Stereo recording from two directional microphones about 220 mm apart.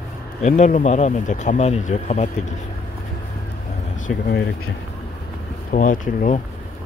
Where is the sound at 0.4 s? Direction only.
35° left (ahead or behind).